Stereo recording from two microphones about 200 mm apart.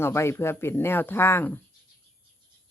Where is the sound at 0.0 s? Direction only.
10° left (ahead or behind).